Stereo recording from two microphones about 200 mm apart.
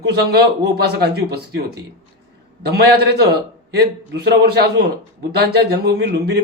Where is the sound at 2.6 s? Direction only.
55° right (ahead or behind).